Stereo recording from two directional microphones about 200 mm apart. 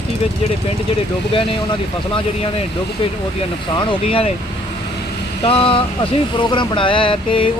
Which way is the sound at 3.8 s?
25° left (ahead or behind).